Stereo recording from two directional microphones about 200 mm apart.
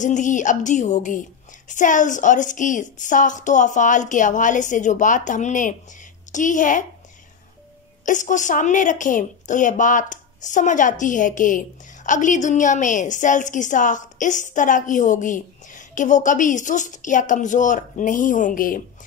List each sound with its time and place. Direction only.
0.0 s a woman's voice: 40° left (ahead or behind)
8.0 s a woman's voice: 40° left (ahead or behind)